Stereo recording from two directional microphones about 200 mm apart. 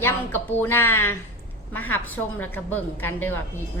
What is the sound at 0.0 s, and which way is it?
A woman's voice, 10° left (ahead or behind).